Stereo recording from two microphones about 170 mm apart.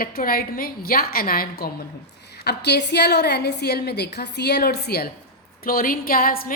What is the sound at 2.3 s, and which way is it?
A woman's voice, 75° left (ahead or behind).